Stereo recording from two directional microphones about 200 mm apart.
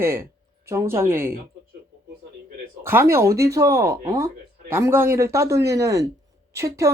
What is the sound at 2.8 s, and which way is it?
Speech, 10° right (ahead or behind).